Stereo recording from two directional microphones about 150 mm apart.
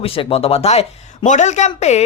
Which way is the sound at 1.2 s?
55° left (ahead or behind).